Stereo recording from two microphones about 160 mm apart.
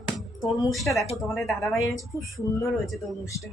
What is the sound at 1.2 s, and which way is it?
A woman's voice, centre (ahead or behind).